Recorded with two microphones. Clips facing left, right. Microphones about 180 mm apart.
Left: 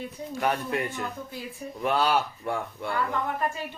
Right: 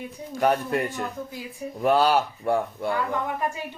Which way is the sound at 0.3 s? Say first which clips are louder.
Right 5 dB; 40° right (ahead or behind).